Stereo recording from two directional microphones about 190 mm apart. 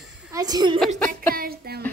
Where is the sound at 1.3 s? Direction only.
50° right (ahead or behind).